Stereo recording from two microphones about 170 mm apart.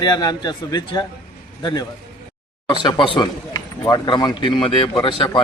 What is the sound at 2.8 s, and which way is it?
A man's voice, 30° left (ahead or behind).